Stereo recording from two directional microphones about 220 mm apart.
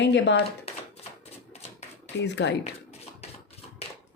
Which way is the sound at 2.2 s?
50° left (ahead or behind).